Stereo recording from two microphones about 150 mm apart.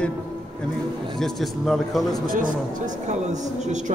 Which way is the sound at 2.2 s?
65° right (ahead or behind).